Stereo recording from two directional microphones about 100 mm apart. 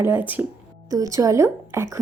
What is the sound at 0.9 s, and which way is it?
A woman's voice, 35° right (ahead or behind).